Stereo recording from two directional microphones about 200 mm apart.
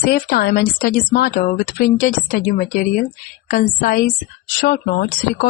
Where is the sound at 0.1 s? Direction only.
45° left (ahead or behind).